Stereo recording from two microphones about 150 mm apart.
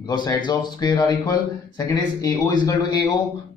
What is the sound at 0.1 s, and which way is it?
Speech, 30° left (ahead or behind).